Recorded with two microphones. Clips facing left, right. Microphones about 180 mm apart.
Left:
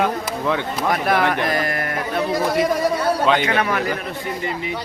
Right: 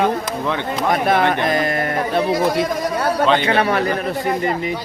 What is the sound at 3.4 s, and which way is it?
Speech, 35° right (ahead or behind).